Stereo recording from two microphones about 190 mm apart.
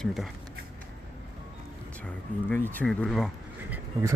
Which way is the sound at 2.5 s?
5° left (ahead or behind).